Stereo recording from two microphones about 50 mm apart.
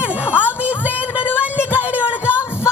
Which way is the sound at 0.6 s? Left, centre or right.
Right.